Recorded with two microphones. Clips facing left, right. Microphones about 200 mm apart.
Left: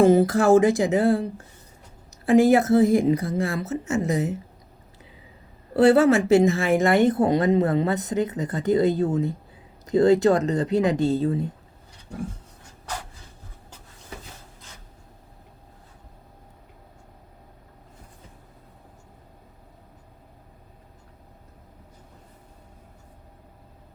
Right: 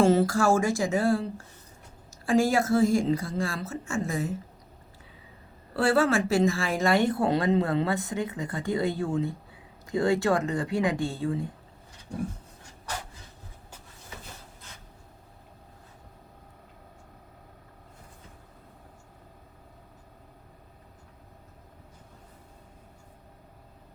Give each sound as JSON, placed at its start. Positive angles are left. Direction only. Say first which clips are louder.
{"t": 0.0, "sound": "speech", "louder": "left 5 dB", "side_deg": 20}
{"t": 5.7, "sound": "speech", "louder": "left 7 dB", "side_deg": 20}